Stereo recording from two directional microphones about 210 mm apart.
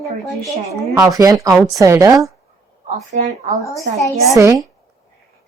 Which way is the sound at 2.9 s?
30° right (ahead or behind).